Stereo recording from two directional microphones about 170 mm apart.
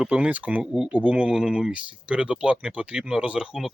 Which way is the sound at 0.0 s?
5° right (ahead or behind).